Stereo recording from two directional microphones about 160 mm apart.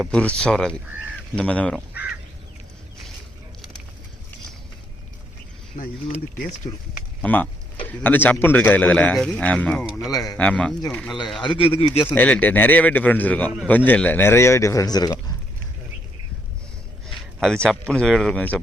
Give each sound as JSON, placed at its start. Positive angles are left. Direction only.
{"t": 0.0, "sound": "a man's voice", "side_deg": 5}
{"t": 5.7, "sound": "speech", "side_deg": 50}
{"t": 7.2, "sound": "a man's voice", "side_deg": 10}
{"t": 10.1, "sound": "speech", "side_deg": 25}
{"t": 10.3, "sound": "a man's voice", "side_deg": 10}
{"t": 11.4, "sound": "speech", "side_deg": 35}
{"t": 12.1, "sound": "a man's voice", "side_deg": 10}
{"t": 17.1, "sound": "speech", "side_deg": 0}